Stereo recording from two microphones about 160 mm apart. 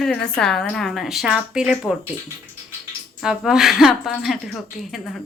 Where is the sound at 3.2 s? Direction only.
5° right (ahead or behind).